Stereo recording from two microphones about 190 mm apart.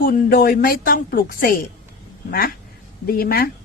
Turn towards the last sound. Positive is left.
turn(degrees=55)  # may be behind; listen again after turning